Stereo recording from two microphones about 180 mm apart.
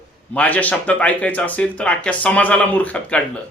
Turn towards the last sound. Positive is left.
turn(degrees=5)  # may be behind; listen again after turning